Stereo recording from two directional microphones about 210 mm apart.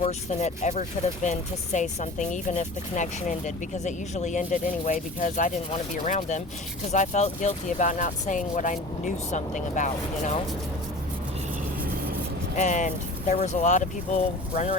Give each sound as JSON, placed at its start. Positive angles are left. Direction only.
{"t": 0.0, "sound": "speech", "side_deg": 30}
{"t": 12.5, "sound": "speech", "side_deg": 35}